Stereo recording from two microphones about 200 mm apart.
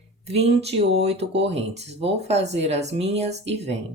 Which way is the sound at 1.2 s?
60° right (ahead or behind).